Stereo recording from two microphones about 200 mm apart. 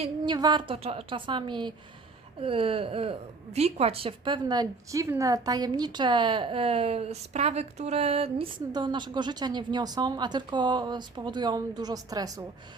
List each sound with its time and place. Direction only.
0.0 s a woman's voice: 20° right (ahead or behind)